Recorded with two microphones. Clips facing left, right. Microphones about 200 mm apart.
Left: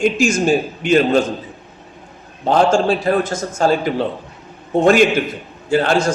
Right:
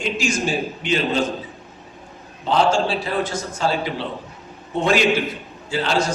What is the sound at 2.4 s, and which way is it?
A man's voice, 50° left (ahead or behind).